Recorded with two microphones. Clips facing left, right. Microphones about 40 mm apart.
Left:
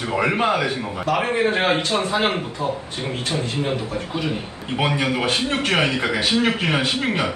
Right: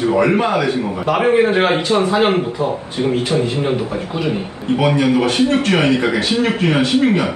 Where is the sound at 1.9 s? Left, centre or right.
Right.